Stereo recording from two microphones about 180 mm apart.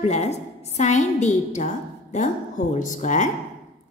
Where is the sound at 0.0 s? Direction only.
40° left (ahead or behind).